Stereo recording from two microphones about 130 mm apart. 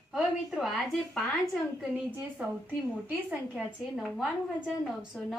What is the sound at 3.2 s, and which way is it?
A woman's voice, centre (ahead or behind).